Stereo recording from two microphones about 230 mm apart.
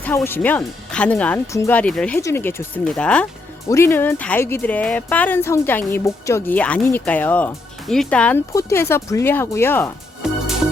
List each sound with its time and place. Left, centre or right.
0.0 s speech: centre
10.2 s music: centre